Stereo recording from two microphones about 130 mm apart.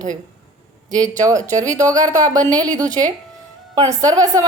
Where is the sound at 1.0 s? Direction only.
25° right (ahead or behind).